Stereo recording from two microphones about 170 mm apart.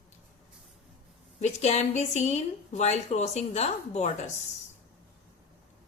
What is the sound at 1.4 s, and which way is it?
A woman's voice, 40° left (ahead or behind).